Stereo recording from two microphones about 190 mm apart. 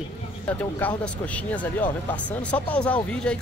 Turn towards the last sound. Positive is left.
turn(degrees=5)  # may be behind; listen again after turning